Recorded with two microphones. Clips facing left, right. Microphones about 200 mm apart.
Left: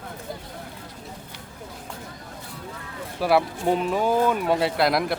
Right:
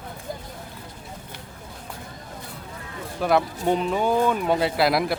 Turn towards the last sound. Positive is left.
turn(degrees=0)  # may be behind; listen again after turning